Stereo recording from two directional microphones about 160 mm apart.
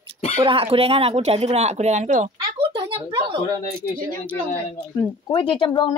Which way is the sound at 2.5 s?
30° right (ahead or behind).